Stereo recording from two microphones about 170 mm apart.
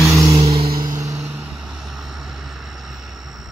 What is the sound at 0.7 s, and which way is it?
Music, 20° right (ahead or behind).